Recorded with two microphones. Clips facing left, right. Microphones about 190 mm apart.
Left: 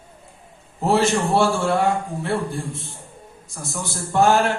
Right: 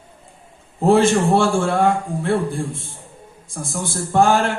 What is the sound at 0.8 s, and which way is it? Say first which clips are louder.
A man's voice: right 4 dB; 50° right (ahead or behind).